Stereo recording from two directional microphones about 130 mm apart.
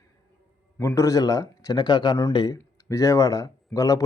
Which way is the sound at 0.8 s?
20° left (ahead or behind).